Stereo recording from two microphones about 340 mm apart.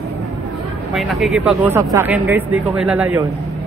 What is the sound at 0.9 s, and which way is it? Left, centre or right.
Speech, centre.